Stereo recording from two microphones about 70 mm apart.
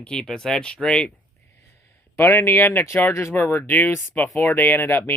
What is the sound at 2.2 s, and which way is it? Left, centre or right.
Speech, left.